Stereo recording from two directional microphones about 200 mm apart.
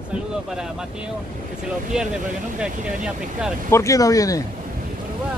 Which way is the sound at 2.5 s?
5° right (ahead or behind).